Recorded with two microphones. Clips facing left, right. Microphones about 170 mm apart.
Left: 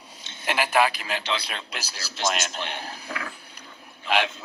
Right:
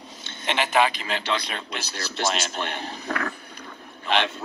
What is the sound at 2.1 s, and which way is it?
Speech, 50° right (ahead or behind).